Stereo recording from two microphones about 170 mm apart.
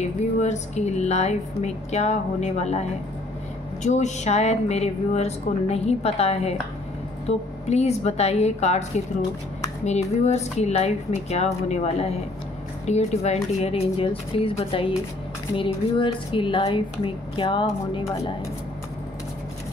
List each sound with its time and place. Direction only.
0.4 s speech: 40° left (ahead or behind)
3.8 s speech: 45° left (ahead or behind)